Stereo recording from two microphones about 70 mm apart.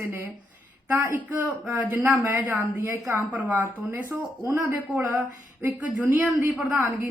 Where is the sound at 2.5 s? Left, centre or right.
Right.